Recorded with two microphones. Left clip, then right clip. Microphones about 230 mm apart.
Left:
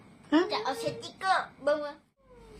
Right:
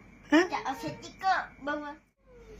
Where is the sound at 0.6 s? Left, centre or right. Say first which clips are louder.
Left 3 dB; centre.